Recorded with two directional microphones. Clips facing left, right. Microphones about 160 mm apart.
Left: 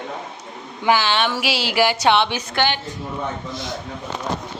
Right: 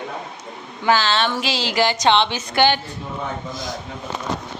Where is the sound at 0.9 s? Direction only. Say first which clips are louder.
Even; 15° left (ahead or behind).